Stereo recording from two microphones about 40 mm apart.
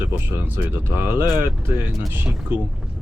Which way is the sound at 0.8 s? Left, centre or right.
Right.